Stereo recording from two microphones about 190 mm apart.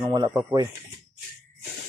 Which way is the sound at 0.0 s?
20° right (ahead or behind).